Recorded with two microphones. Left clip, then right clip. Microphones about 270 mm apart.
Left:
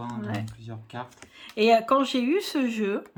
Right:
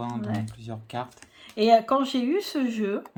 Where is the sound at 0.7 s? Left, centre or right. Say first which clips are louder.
Right 4 dB; right.